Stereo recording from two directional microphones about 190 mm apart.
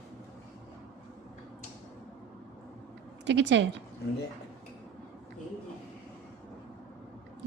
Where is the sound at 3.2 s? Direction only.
70° right (ahead or behind).